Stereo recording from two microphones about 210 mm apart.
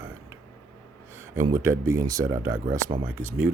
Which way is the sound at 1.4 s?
10° right (ahead or behind).